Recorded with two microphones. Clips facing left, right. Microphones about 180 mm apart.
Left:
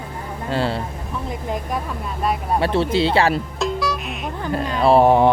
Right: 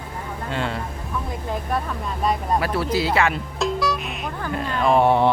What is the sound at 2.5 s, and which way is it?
Speech, 25° left (ahead or behind).